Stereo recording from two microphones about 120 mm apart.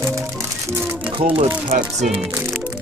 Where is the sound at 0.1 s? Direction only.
25° right (ahead or behind).